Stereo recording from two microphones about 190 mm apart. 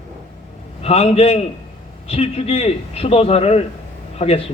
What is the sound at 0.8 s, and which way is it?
A man's voice, 30° left (ahead or behind).